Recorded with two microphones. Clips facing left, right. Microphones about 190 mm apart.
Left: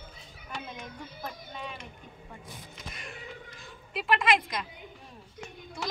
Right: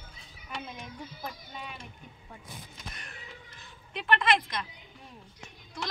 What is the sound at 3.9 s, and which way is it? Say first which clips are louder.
Speech: left 1 dB; 5° left (ahead or behind).